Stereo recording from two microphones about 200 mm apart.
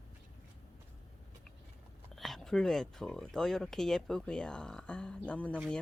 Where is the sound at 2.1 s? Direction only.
Centre (ahead or behind).